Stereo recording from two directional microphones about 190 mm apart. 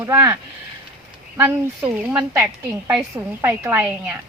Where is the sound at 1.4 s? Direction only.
10° right (ahead or behind).